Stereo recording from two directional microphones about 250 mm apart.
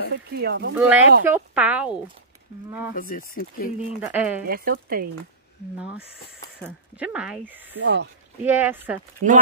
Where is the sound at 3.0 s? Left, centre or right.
Left.